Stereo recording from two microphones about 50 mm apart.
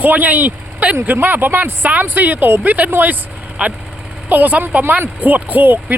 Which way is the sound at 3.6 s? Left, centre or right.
Right.